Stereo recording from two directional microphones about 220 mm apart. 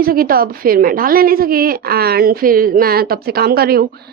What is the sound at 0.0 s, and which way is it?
A woman's voice, 40° right (ahead or behind).